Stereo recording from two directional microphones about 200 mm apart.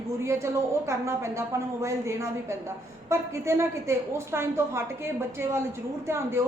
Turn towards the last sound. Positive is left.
turn(degrees=-15)  # may be behind; listen again after turning